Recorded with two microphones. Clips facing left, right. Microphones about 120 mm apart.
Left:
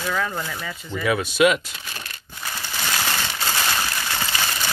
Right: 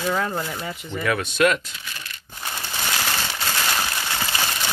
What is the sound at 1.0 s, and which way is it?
Speech, 5° left (ahead or behind).